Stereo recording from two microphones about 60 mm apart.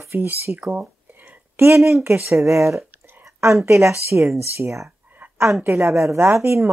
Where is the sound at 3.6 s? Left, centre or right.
Right.